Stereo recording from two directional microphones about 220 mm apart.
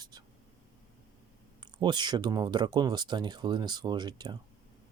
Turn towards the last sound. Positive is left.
turn(degrees=-20)  # may be behind; listen again after turning